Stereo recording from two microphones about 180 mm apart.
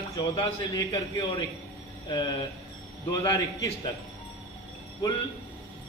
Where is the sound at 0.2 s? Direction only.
25° left (ahead or behind).